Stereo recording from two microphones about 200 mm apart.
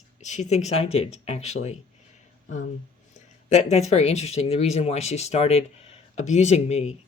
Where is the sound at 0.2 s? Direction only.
35° left (ahead or behind).